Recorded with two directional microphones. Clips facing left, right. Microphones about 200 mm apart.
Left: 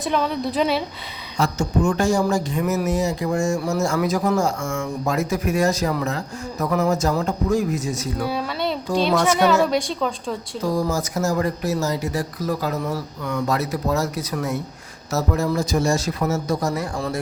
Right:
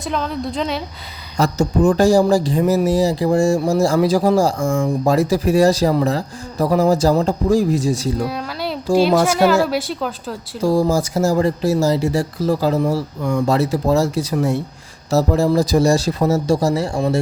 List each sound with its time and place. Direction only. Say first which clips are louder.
0.0 s a woman's voice: even; centre (ahead or behind)
1.4 s speech: right 5 dB; 35° right (ahead or behind)
8.3 s a sound: left 1 dB; centre (ahead or behind)
9.2 s a woman's voice: right 2 dB; 10° right (ahead or behind)
10.6 s speech: right 7 dB; 30° right (ahead or behind)